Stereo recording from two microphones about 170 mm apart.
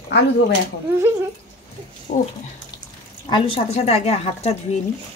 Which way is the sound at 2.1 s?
50° left (ahead or behind).